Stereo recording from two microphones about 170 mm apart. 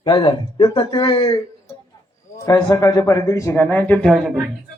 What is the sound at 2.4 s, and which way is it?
A man's voice, 20° left (ahead or behind).